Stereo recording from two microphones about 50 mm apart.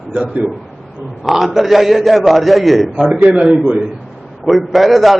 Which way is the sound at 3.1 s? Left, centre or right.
Right.